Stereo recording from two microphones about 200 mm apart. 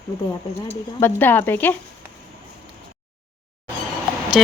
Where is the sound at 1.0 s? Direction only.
10° left (ahead or behind).